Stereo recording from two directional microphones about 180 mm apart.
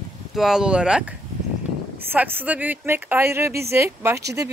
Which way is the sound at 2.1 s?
10° right (ahead or behind).